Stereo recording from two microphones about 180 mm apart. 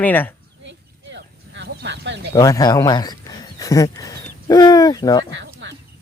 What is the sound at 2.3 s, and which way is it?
Speech, 20° left (ahead or behind).